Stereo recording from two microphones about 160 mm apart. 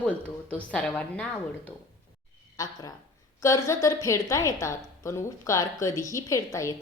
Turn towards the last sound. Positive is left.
turn(degrees=20)  # may be behind; listen again after turning